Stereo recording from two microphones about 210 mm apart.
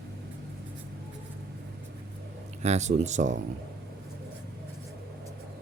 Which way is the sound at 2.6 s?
30° right (ahead or behind).